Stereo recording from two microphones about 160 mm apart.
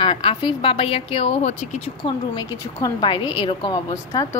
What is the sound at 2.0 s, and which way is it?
A woman's voice, 25° left (ahead or behind).